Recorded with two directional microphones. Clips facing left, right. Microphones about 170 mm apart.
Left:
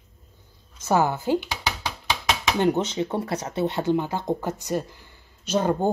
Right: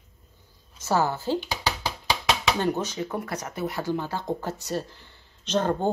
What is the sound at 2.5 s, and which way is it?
Speech, 20° left (ahead or behind).